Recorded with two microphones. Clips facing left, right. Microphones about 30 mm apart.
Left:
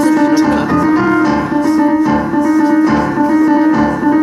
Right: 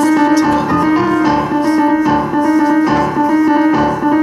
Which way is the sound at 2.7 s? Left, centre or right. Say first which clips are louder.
Left 1 dB; centre.